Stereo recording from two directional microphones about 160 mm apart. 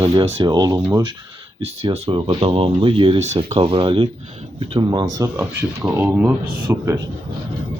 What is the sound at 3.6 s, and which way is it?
Speech, 35° right (ahead or behind).